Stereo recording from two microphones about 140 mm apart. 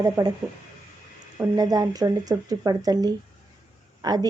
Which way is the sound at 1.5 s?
25° right (ahead or behind).